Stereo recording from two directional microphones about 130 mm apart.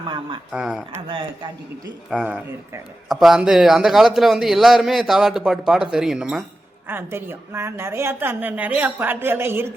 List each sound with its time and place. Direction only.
0.0 s speech: 40° right (ahead or behind)
0.5 s a man's voice: 5° right (ahead or behind)
1.0 s speech: 40° right (ahead or behind)
2.1 s a man's voice: 5° right (ahead or behind)
6.8 s a woman's voice: 15° right (ahead or behind)